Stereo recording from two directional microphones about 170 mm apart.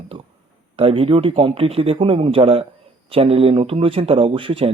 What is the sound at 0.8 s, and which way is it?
Speech, 35° right (ahead or behind).